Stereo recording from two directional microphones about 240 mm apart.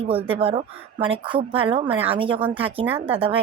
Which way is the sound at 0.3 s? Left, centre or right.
Right.